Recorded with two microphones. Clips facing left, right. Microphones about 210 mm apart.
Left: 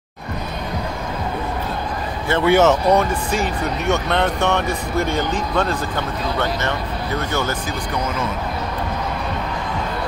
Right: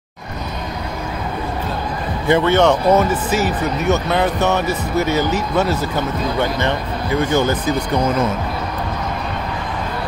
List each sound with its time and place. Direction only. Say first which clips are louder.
2.4 s speech: left 3 dB; 5° left (ahead or behind); by 7.7 s 15° right (ahead or behind)